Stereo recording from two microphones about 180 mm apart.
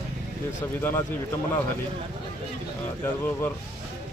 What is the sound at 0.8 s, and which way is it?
Speech, 15° left (ahead or behind).